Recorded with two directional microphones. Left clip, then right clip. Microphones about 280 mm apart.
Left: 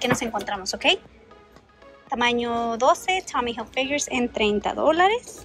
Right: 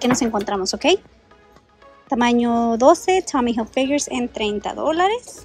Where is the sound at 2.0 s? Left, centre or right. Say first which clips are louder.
Right 4 dB; centre.